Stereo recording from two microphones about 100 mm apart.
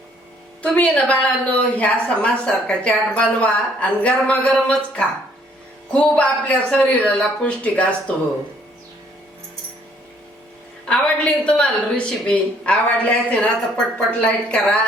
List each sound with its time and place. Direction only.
0.6 s a woman's voice: 15° left (ahead or behind)
10.8 s a woman's voice: 10° left (ahead or behind)